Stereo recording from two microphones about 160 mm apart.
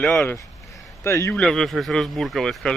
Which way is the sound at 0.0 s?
5° left (ahead or behind).